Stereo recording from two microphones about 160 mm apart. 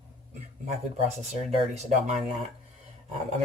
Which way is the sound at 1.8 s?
45° right (ahead or behind).